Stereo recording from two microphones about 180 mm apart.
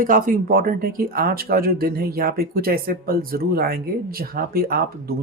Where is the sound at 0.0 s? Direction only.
50° right (ahead or behind).